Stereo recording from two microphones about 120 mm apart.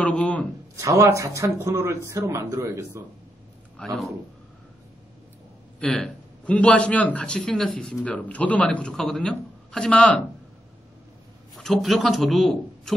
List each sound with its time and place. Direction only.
0.0 s a man's voice: 10° left (ahead or behind)
0.7 s speech: 25° right (ahead or behind)
3.8 s a man's voice: 10° left (ahead or behind)
5.8 s a man's voice: 10° left (ahead or behind)
11.5 s a man's voice: centre (ahead or behind)